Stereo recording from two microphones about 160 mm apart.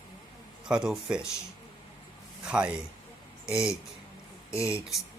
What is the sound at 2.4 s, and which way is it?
Speech, 5° right (ahead or behind).